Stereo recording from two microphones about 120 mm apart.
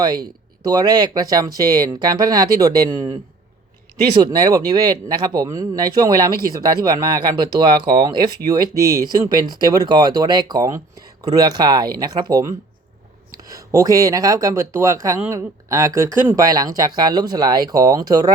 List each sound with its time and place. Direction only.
0.6 s speech: 35° right (ahead or behind)